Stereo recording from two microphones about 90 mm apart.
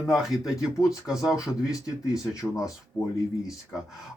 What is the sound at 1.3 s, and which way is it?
Speech, 40° left (ahead or behind).